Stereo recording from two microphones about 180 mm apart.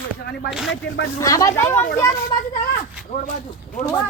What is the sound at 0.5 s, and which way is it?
Speech, centre (ahead or behind).